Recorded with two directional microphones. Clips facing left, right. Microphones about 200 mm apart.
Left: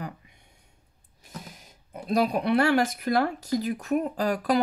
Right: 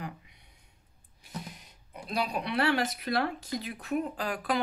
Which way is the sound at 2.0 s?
45° left (ahead or behind).